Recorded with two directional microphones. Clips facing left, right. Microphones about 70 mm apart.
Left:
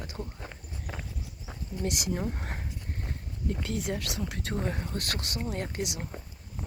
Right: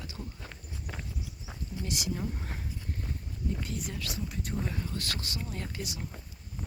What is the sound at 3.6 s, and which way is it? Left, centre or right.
Speech, left.